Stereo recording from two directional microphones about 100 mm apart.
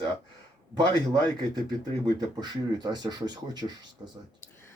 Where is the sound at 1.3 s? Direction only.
45° right (ahead or behind).